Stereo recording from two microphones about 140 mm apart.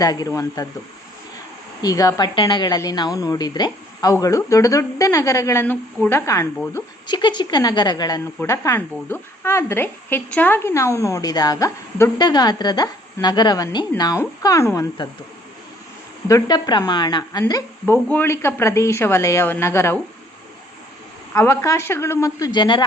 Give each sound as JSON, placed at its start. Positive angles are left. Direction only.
{"t": 0.0, "sound": "speech", "side_deg": 25}
{"t": 1.8, "sound": "speech", "side_deg": 25}
{"t": 7.1, "sound": "a woman's voice", "side_deg": 30}
{"t": 16.3, "sound": "a woman's voice", "side_deg": 30}
{"t": 17.4, "sound": "a woman's voice", "side_deg": 15}
{"t": 21.3, "sound": "speech", "side_deg": 20}